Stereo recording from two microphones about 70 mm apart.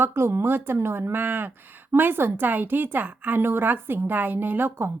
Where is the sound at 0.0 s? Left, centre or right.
Right.